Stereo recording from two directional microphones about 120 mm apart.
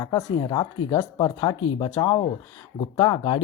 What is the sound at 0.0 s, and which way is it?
Speech, 30° left (ahead or behind).